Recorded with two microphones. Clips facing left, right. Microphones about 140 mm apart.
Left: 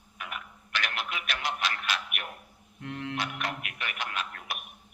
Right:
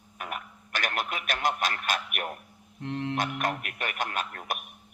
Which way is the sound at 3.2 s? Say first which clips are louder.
Right 5 dB; 45° right (ahead or behind).